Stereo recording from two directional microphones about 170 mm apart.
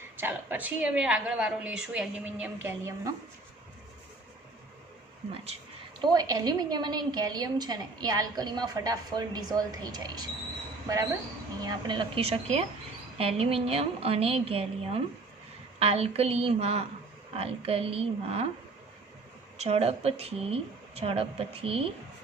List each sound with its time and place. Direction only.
0.2 s a woman's voice: 10° right (ahead or behind)
6.0 s a woman's voice: 25° right (ahead or behind)
19.5 s a woman's voice: 40° right (ahead or behind)